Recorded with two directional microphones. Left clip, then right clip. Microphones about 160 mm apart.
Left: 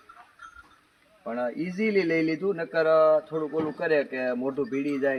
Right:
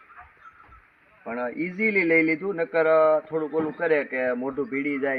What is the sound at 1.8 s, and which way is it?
Speech, 35° left (ahead or behind).